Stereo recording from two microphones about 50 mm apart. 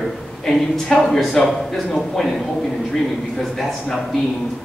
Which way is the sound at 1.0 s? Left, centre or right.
Centre.